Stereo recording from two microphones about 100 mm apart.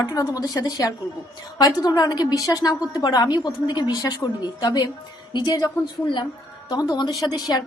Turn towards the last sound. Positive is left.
turn(degrees=45)  # may be behind; listen again after turning